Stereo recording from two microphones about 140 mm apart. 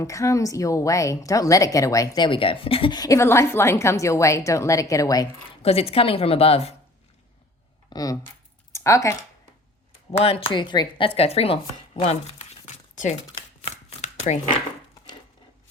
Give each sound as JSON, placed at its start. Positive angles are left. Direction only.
{"t": 0.0, "sound": "a woman's voice", "side_deg": 20}
{"t": 5.6, "sound": "a woman's voice", "side_deg": 45}
{"t": 7.9, "sound": "speech", "side_deg": 25}
{"t": 8.7, "sound": "a sound", "side_deg": 20}
{"t": 10.1, "sound": "speech", "side_deg": 45}
{"t": 13.6, "sound": "chopping", "side_deg": 50}